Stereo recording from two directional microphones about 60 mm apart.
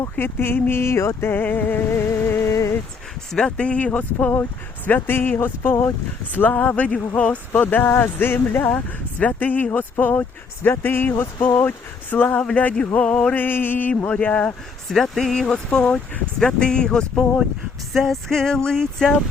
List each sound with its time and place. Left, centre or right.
0.0 s speech: left
1.3 s speech: left
1.9 s music: left
2.5 s a sound: left
3.3 s speech: centre; by 5.4 s left
5.4 s music: left
6.3 s speech: left
12.4 s music: centre
12.9 s speech: left
14.1 s speech: left
14.8 s speech: centre
15.8 s speech: left
16.5 s music: centre